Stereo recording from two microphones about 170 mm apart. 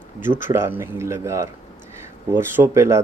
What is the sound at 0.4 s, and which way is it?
Speech, 15° right (ahead or behind).